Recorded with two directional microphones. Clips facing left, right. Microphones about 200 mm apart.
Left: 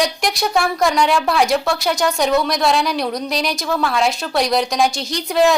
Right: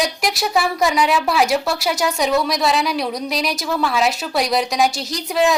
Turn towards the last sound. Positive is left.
turn(degrees=0)  # may be behind; listen again after turning